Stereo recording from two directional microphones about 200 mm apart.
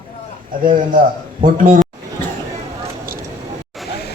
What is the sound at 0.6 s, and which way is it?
A man's voice, 45° right (ahead or behind).